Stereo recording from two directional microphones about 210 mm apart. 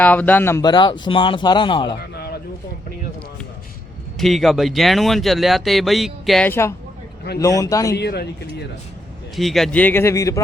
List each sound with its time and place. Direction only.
0.0 s speech: 10° left (ahead or behind); by 2.0 s 25° left (ahead or behind)
2.0 s a sound: 50° left (ahead or behind)
4.2 s speech: centre (ahead or behind); by 7.9 s 15° left (ahead or behind)
7.9 s speech: 50° left (ahead or behind)
9.3 s speech: centre (ahead or behind)